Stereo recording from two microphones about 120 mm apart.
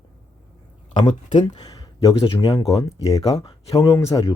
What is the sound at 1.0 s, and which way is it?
Speech, 40° left (ahead or behind).